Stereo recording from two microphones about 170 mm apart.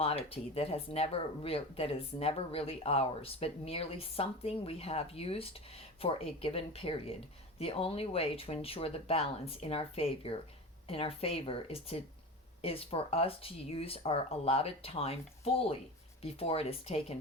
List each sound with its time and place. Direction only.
0.0 s speech: 35° left (ahead or behind)